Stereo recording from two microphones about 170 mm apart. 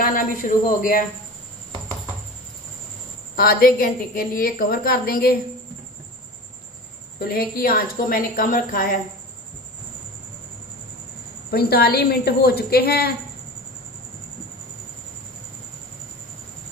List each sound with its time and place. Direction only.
0.0 s speech: 50° left (ahead or behind)
3.3 s a woman's voice: 60° left (ahead or behind)
7.2 s a woman's voice: 60° left (ahead or behind)
11.5 s a woman's voice: 65° left (ahead or behind)